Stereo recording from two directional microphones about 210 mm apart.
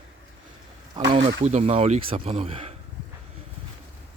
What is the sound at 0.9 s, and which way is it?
Speech, 25° right (ahead or behind).